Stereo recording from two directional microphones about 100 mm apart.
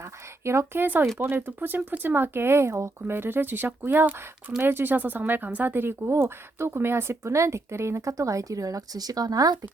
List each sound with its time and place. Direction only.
0.4 s speech: 25° right (ahead or behind)